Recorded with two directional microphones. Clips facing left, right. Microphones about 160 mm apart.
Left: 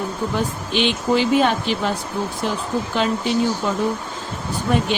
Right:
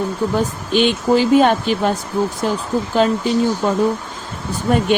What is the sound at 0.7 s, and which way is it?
Speech, 45° right (ahead or behind).